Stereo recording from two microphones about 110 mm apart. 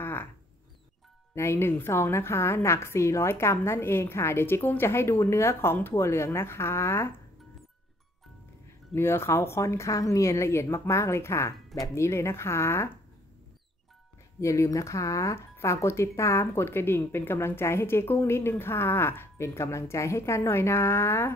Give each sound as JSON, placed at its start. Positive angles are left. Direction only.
{"t": 0.0, "sound": "mouse", "side_deg": 20}
{"t": 1.3, "sound": "speech", "side_deg": 25}
{"t": 8.9, "sound": "speech", "side_deg": 20}
{"t": 14.4, "sound": "speech", "side_deg": 30}